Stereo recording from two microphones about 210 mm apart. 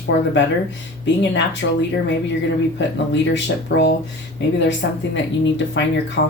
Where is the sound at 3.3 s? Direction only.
60° left (ahead or behind).